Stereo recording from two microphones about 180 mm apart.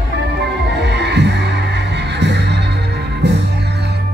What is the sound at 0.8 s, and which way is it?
Music, 70° right (ahead or behind).